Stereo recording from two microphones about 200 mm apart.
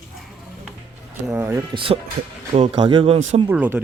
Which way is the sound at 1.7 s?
25° right (ahead or behind).